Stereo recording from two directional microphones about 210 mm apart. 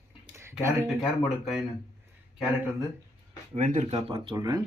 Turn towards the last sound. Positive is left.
turn(degrees=-20)  # may be behind; listen again after turning